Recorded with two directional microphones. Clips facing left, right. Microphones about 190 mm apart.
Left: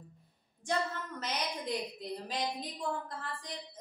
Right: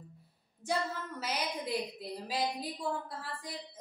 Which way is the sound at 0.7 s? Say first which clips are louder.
Even; 5° right (ahead or behind).